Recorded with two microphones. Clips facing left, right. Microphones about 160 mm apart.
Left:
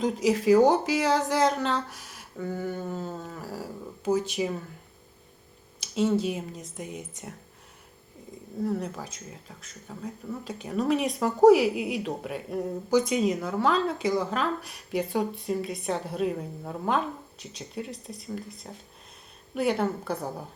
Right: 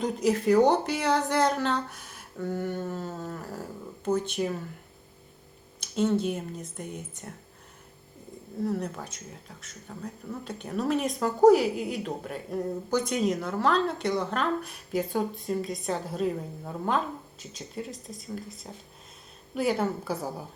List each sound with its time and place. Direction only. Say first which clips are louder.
0.0 s speech: left 1 dB; centre (ahead or behind)
5.8 s speech: left 1 dB; 5° left (ahead or behind)
8.6 s speech: even; centre (ahead or behind)